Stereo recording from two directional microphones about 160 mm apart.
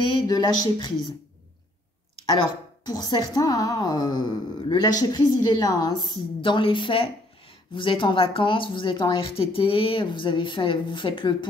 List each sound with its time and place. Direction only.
0.0 s a woman's voice: 30° left (ahead or behind)
2.2 s a woman's voice: 25° left (ahead or behind)